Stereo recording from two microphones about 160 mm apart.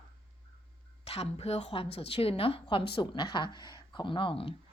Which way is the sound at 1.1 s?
40° left (ahead or behind).